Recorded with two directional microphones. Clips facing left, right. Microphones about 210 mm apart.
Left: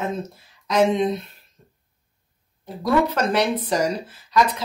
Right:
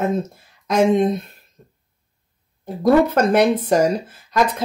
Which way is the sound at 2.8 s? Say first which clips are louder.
Right 6 dB; 50° right (ahead or behind).